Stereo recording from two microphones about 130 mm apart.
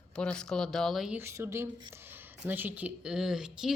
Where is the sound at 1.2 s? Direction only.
20° right (ahead or behind).